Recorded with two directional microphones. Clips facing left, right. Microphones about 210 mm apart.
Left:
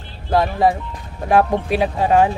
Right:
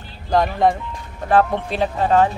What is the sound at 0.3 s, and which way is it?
Speech, 5° left (ahead or behind).